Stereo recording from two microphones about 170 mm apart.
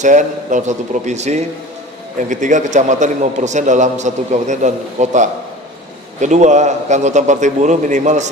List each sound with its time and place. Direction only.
0.0 s a man's voice: 45° right (ahead or behind)